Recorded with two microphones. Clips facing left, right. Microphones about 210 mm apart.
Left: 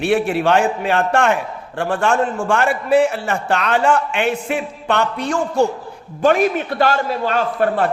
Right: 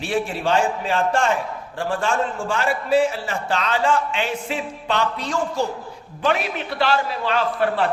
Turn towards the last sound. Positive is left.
turn(degrees=45)  # may be behind; listen again after turning